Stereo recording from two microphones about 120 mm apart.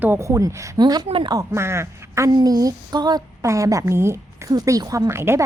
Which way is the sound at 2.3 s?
35° right (ahead or behind).